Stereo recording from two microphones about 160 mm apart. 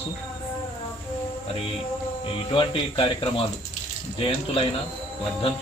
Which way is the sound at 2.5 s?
35° left (ahead or behind).